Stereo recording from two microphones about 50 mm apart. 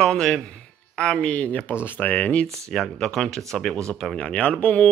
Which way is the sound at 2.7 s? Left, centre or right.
Centre.